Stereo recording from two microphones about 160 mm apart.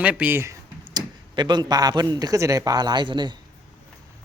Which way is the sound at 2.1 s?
20° right (ahead or behind).